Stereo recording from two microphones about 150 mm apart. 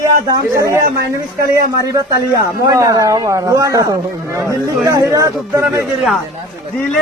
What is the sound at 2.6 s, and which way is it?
Speech, 20° right (ahead or behind).